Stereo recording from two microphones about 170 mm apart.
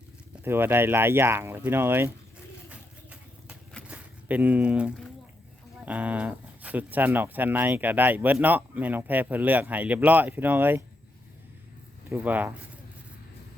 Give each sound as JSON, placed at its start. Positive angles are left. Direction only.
{"t": 0.4, "sound": "speech", "side_deg": -15}
{"t": 2.6, "sound": "vehicle", "side_deg": -10}
{"t": 3.8, "sound": "speech", "side_deg": -10}
{"t": 12.0, "sound": "speech", "side_deg": -10}